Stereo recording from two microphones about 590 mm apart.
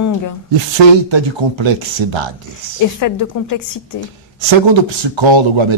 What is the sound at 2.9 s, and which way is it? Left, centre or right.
Speech, left.